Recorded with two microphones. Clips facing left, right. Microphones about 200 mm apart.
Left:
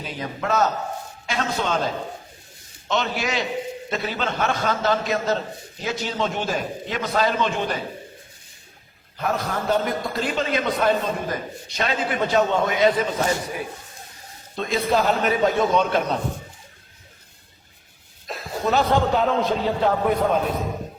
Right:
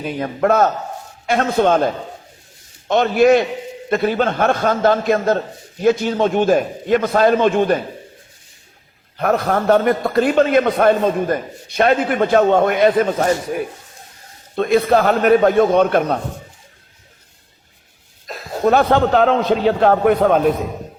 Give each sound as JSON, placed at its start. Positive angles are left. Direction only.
{"t": 0.0, "sound": "a man's voice", "side_deg": -55}
{"t": 2.9, "sound": "a man's voice", "side_deg": -55}
{"t": 9.1, "sound": "a man's voice", "side_deg": -60}
{"t": 18.3, "sound": "a sound", "side_deg": 0}
{"t": 18.6, "sound": "a man's voice", "side_deg": -55}